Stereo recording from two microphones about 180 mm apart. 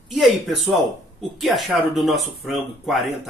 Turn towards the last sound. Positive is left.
turn(degrees=0)  # may be behind; listen again after turning